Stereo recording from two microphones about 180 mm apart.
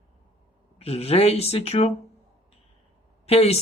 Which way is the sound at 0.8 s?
35° left (ahead or behind).